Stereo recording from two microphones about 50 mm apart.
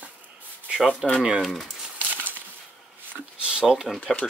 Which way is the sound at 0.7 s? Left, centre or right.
Right.